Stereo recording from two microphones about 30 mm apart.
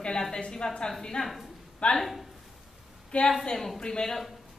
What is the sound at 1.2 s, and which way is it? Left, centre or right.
A woman's voice, centre.